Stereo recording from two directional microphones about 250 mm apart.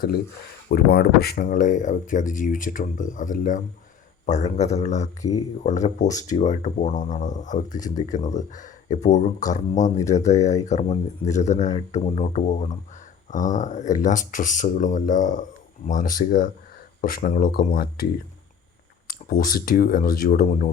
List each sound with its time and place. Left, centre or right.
0.7 s speech: left
19.0 s speech: left